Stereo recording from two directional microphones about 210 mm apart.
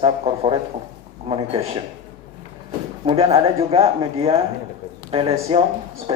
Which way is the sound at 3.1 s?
30° right (ahead or behind).